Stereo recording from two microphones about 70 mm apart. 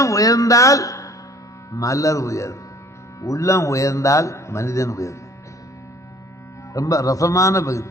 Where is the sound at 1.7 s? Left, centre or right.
Left.